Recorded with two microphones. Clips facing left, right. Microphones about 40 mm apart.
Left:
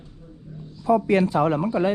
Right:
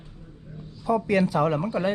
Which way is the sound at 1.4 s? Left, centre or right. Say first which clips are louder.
Left 2 dB; left.